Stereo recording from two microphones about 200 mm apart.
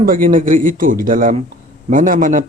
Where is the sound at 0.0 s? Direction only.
45° right (ahead or behind).